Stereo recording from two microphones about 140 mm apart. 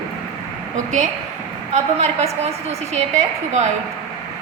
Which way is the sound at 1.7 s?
55° right (ahead or behind).